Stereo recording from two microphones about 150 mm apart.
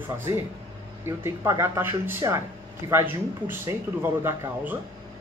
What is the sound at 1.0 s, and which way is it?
Speech, 15° right (ahead or behind).